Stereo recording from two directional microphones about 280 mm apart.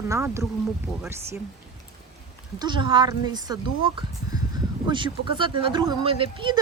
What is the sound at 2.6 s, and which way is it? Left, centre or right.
Speech, centre.